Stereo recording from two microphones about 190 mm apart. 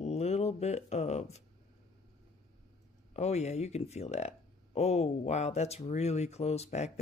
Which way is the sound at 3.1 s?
35° left (ahead or behind).